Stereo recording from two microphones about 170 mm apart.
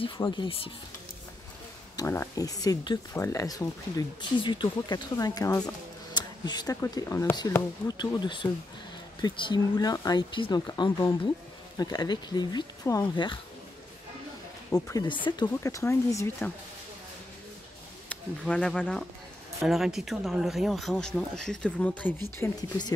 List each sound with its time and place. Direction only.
0.2 s speech: 15° left (ahead or behind)
2.0 s speech: 20° left (ahead or behind)
14.7 s speech: 20° left (ahead or behind)
18.0 s speech: 5° left (ahead or behind)